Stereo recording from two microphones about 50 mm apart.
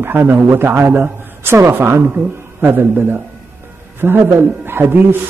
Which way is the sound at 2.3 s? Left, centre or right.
Right.